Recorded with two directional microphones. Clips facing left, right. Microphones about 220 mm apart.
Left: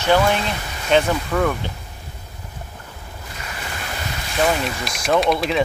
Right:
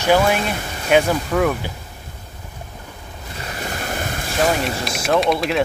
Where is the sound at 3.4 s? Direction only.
40° right (ahead or behind).